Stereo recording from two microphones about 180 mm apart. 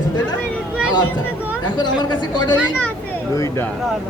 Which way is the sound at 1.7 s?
25° left (ahead or behind).